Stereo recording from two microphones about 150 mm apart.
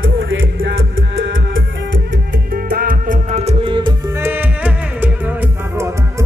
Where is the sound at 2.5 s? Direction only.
75° right (ahead or behind); by 3.9 s 35° right (ahead or behind).